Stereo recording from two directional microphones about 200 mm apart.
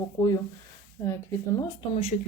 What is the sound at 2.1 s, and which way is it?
Speech, 40° left (ahead or behind).